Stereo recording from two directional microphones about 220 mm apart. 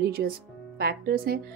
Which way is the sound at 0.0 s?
45° right (ahead or behind).